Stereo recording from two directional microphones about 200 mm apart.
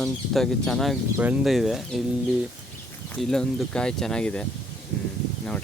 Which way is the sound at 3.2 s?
Centre (ahead or behind).